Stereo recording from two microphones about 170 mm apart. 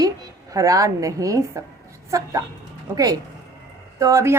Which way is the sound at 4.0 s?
20° right (ahead or behind).